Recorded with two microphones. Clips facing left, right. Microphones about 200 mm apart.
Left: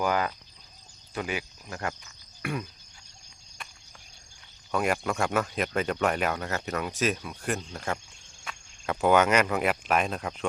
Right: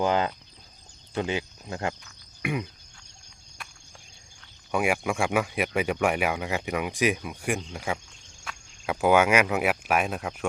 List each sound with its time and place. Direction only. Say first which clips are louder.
0.0 s speech: right 3 dB; 25° right (ahead or behind)
2.4 s frog: right 3 dB; 15° right (ahead or behind)
4.7 s speech: right 2 dB; 10° right (ahead or behind)